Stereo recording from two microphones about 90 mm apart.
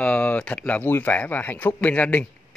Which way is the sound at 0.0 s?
15° left (ahead or behind).